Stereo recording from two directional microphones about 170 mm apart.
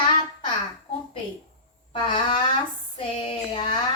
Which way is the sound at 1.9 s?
25° left (ahead or behind).